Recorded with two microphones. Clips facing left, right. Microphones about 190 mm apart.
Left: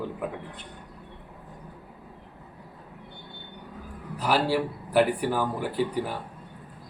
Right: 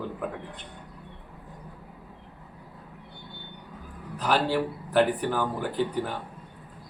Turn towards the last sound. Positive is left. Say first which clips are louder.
# even
turn(degrees=10)  # may be behind; listen again after turning